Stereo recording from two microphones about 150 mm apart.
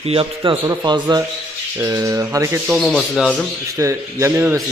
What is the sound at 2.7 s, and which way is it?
Speech, 5° left (ahead or behind).